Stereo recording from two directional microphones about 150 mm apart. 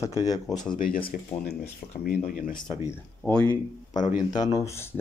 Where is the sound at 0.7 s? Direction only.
75° left (ahead or behind).